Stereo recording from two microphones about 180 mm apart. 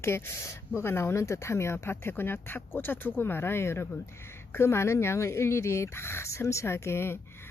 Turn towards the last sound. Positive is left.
turn(degrees=15)  # may be behind; listen again after turning